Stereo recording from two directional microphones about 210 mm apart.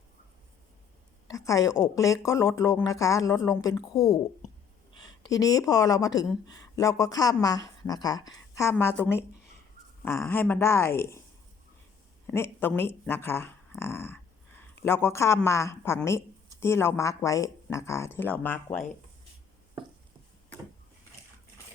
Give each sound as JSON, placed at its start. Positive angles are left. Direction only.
{"t": 1.3, "sound": "a woman's voice", "side_deg": 15}
{"t": 12.3, "sound": "speech", "side_deg": 10}